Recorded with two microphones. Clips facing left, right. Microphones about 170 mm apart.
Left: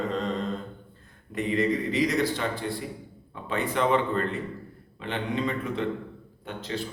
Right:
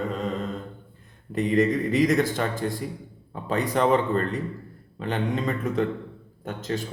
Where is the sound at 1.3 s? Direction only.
45° right (ahead or behind).